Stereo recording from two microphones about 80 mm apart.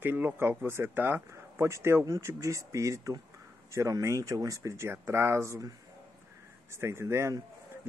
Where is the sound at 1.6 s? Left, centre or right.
Right.